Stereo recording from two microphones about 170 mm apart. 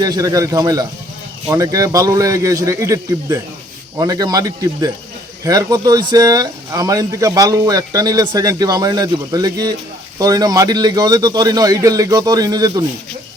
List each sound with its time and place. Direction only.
0.0 s speech: 20° right (ahead or behind)